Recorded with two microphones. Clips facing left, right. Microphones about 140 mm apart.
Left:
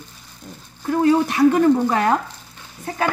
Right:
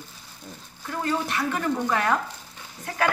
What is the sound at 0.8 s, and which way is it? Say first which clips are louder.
Speech: left 11 dB; 35° left (ahead or behind).